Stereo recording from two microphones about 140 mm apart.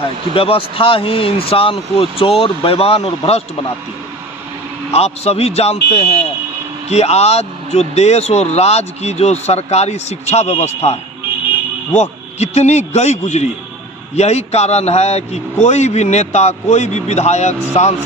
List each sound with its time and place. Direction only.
0.3 s speech: 40° left (ahead or behind)
4.9 s speech: 45° left (ahead or behind)
11.9 s speech: 50° left (ahead or behind)